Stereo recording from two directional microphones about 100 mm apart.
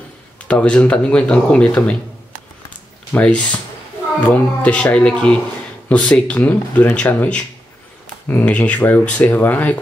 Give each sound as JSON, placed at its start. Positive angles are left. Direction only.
{"t": 0.5, "sound": "speech", "side_deg": 10}
{"t": 3.1, "sound": "speech", "side_deg": 20}